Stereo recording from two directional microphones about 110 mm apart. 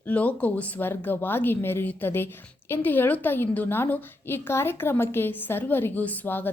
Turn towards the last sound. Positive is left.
turn(degrees=15)  # may be behind; listen again after turning